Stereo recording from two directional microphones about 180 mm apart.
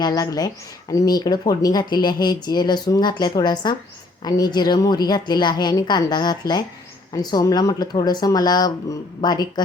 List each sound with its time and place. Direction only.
0.0 s speech: 20° left (ahead or behind)